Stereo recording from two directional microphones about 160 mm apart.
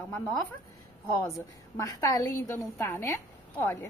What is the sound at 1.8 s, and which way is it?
A woman's voice, 20° left (ahead or behind).